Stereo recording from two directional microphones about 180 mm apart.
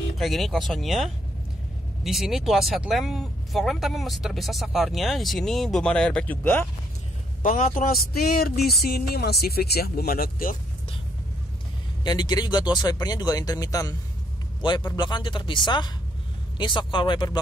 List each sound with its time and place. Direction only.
0.2 s speech: centre (ahead or behind)
7.4 s speech: 45° left (ahead or behind)
12.0 s speech: 25° left (ahead or behind)